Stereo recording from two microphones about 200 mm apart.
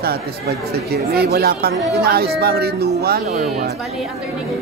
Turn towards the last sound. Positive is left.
turn(degrees=-50)  # may be behind; listen again after turning